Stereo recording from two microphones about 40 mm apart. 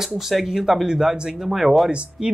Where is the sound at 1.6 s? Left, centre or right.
Centre.